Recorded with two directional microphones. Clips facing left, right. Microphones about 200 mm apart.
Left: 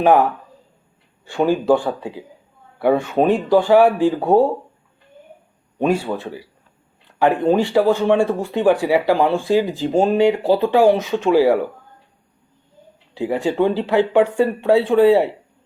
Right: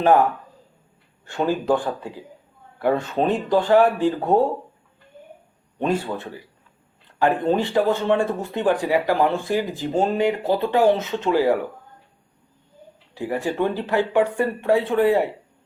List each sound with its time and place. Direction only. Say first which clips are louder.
1.2 s speech: left 5 dB; 15° left (ahead or behind)
5.8 s speech: left 4 dB; 10° left (ahead or behind)
13.1 s speech: left 5 dB; 15° left (ahead or behind)